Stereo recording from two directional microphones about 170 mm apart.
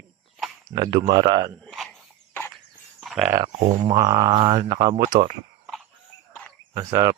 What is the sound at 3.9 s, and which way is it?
Speech, 20° right (ahead or behind).